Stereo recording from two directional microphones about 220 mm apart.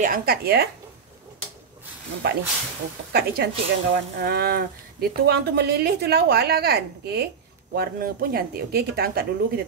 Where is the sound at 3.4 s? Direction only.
45° right (ahead or behind).